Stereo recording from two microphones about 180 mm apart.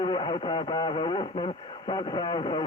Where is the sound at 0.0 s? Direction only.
25° left (ahead or behind).